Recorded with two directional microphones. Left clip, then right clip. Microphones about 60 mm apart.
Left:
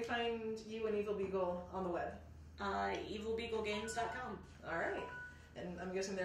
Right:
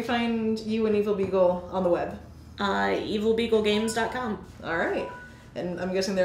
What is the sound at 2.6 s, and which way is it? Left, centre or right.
A woman's voice, left.